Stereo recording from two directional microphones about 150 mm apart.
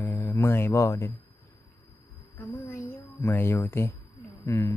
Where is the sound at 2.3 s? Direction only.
15° left (ahead or behind).